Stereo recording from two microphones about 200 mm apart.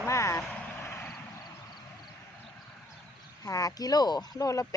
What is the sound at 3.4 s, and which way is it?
Speech, 20° left (ahead or behind).